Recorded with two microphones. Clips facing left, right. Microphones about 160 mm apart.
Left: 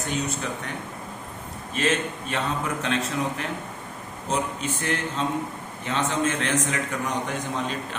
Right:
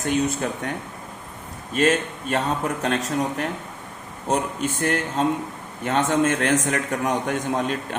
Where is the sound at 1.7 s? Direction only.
45° right (ahead or behind).